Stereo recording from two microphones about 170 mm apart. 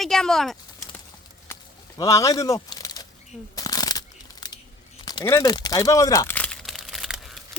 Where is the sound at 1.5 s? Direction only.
20° left (ahead or behind).